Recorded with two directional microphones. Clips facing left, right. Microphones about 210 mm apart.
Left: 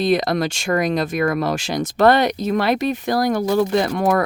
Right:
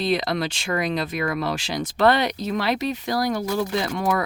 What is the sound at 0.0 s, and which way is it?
Speech, 45° left (ahead or behind).